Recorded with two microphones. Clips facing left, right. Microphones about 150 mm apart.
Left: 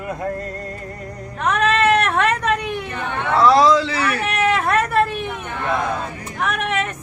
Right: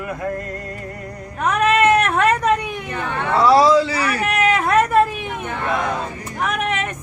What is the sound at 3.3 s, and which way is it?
Speech, 10° right (ahead or behind).